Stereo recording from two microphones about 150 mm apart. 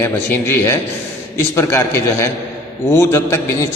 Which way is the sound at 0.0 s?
15° left (ahead or behind).